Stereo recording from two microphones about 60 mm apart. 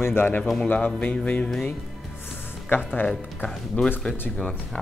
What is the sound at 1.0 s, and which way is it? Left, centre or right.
Music, left.